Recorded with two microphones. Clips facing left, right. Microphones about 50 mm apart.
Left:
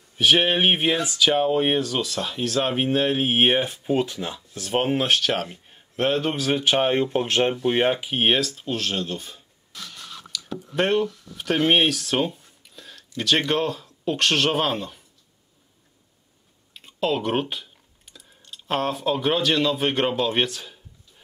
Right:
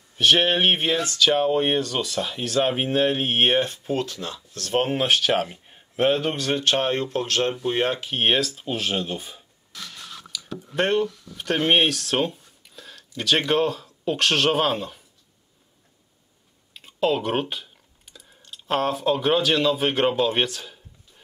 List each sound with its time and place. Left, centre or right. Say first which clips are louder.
0.2 s speech: even; centre
10.3 s a sound: left 2 dB; centre
10.8 s speech: even; centre
16.7 s speech: right 2 dB; centre